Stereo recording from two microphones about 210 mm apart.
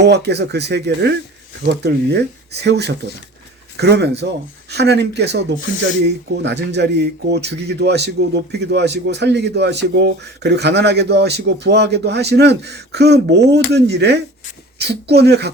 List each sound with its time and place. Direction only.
0.0 s speech: 55° right (ahead or behind)